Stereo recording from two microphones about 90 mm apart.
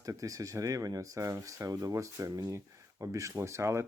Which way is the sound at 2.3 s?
50° right (ahead or behind).